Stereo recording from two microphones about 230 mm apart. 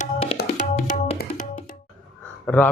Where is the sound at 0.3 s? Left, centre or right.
Left.